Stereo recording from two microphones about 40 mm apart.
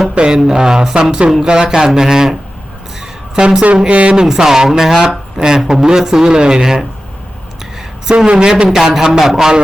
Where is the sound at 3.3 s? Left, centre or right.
Right.